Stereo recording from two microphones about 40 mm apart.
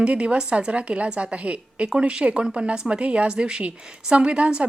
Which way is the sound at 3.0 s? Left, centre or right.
Right.